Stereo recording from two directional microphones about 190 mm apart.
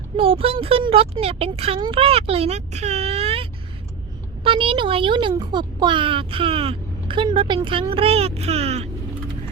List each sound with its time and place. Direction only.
0.2 s speech: 30° right (ahead or behind)
4.4 s a child's voice: 30° right (ahead or behind)